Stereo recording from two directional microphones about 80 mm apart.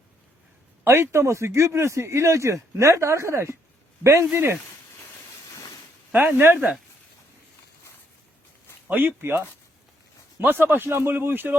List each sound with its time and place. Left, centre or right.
0.9 s speech: right
6.1 s speech: right
8.9 s speech: right
10.4 s speech: right